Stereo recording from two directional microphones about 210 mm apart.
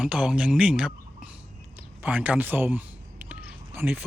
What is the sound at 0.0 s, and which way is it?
Speech, 5° right (ahead or behind).